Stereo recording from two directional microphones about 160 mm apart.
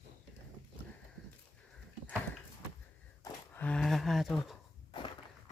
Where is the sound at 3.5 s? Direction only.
5° left (ahead or behind).